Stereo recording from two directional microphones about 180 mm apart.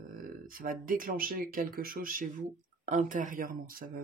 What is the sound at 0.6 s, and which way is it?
Speech, 50° right (ahead or behind).